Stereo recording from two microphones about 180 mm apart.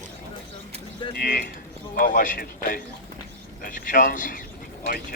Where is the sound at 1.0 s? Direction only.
25° left (ahead or behind).